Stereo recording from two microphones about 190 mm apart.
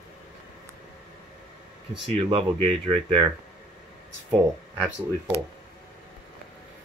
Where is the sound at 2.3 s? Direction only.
30° right (ahead or behind).